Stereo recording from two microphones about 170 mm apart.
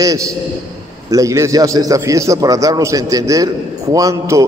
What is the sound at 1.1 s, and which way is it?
A man's voice, 20° right (ahead or behind).